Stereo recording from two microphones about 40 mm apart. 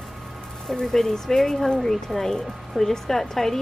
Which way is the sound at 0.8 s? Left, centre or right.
Centre.